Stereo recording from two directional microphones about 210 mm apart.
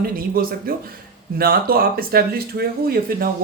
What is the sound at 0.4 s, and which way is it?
Speech, 45° right (ahead or behind).